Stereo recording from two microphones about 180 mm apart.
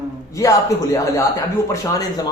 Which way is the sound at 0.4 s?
15° left (ahead or behind).